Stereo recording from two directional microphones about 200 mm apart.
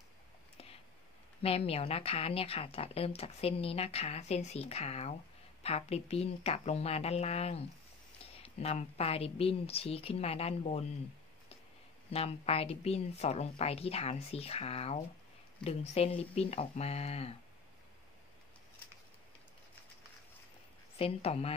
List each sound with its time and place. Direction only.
1.4 s a woman's voice: 30° left (ahead or behind)
12.1 s a woman's voice: 30° left (ahead or behind)
21.0 s a woman's voice: 30° left (ahead or behind)